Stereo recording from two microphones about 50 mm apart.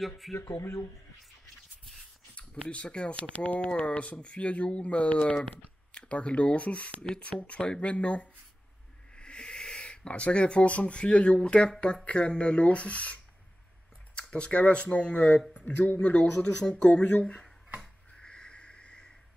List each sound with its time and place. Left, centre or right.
0.3 s speech: left
2.3 s speech: left
16.3 s speech: centre
16.7 s speech: left
18.2 s a sound: centre